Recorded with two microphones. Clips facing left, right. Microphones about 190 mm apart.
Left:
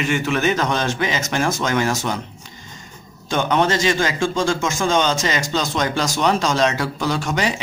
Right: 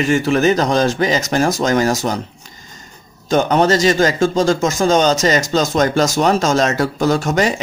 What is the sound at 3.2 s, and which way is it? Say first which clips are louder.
A man's voice: right 5 dB; 40° right (ahead or behind).